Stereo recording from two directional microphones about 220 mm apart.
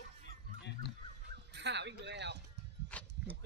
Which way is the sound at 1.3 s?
50° right (ahead or behind).